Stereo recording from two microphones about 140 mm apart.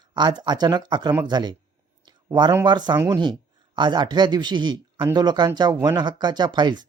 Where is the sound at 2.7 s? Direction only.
30° right (ahead or behind).